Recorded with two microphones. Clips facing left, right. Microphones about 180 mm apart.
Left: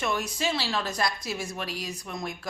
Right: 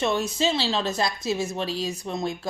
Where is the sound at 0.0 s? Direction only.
25° right (ahead or behind).